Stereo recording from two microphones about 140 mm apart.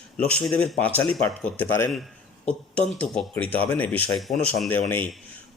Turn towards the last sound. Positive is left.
turn(degrees=10)  # may be behind; listen again after turning